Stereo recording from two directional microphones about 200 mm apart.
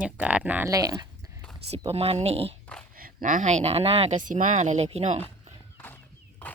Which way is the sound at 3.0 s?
45° right (ahead or behind).